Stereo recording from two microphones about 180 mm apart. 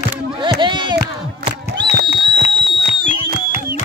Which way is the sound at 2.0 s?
25° right (ahead or behind).